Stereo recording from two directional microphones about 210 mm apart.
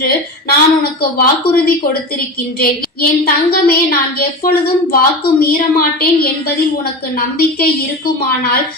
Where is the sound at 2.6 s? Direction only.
45° left (ahead or behind).